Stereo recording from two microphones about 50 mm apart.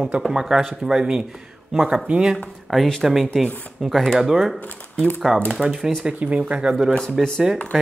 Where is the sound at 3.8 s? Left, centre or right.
Centre.